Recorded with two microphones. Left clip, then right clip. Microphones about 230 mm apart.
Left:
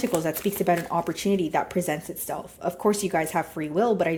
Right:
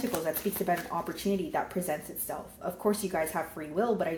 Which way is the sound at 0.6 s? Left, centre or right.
Left.